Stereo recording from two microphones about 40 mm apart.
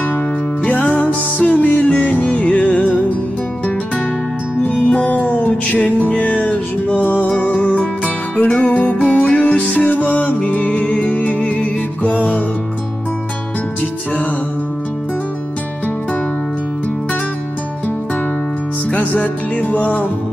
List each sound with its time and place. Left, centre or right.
0.7 s music: left
1.4 s music: left
4.6 s music: left
11.5 s music: left
18.9 s music: left
19.7 s music: left